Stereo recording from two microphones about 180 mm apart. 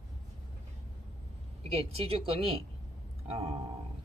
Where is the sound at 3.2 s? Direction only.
30° right (ahead or behind).